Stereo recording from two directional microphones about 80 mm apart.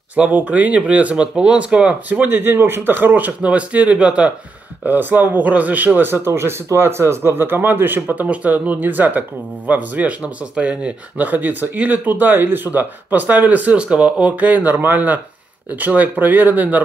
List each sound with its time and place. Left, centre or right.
0.1 s speech: centre